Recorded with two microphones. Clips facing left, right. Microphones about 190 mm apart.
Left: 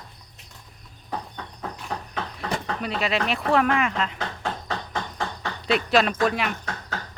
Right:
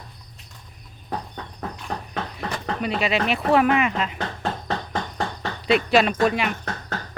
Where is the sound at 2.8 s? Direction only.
Centre (ahead or behind).